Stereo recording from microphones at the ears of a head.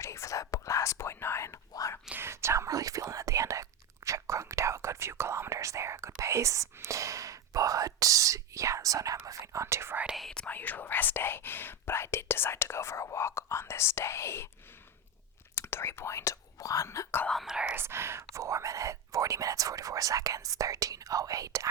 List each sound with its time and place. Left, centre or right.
0.0 s whispering: left
2.4 s whispering: right
10.5 s whispering: left
15.5 s whispering: left
17.7 s whispering: right